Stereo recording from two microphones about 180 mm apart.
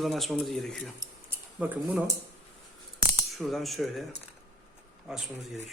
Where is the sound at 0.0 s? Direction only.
Centre (ahead or behind).